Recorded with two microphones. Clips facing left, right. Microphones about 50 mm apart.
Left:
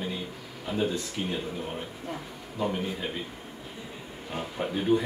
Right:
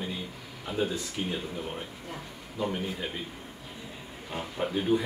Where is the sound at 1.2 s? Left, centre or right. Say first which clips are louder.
Right 1 dB; centre.